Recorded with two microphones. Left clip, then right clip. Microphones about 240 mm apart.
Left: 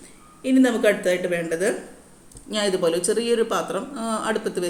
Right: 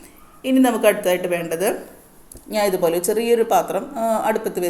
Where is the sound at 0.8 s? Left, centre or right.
Right.